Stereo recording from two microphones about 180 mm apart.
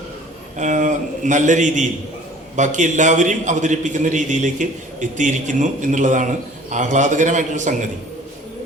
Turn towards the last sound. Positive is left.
turn(degrees=-45)  # may be behind; listen again after turning